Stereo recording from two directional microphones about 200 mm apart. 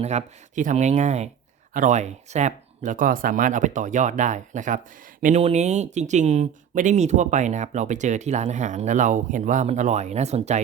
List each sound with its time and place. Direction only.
0.0 s speech: 35° right (ahead or behind)